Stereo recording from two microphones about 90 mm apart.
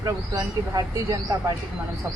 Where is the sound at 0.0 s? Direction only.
40° right (ahead or behind).